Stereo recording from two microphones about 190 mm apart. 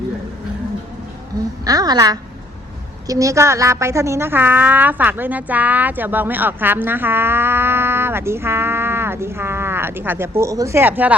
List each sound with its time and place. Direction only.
1.6 s a woman's voice: 20° right (ahead or behind)